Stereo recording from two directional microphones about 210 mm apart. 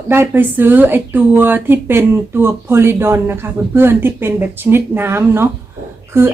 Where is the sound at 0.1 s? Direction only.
10° right (ahead or behind).